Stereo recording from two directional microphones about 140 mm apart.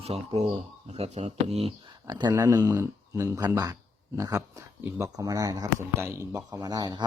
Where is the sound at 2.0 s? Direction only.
30° right (ahead or behind).